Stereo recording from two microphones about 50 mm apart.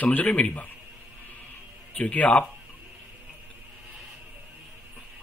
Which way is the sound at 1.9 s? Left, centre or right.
Left.